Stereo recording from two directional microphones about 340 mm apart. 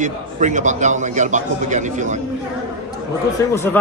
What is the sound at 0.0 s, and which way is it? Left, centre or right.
A man's voice, right.